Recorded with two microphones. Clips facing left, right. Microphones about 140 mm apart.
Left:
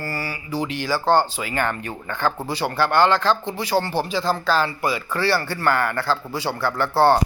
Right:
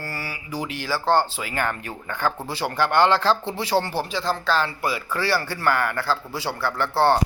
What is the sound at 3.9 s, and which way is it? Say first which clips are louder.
A man's voice: left 3 dB; centre (ahead or behind).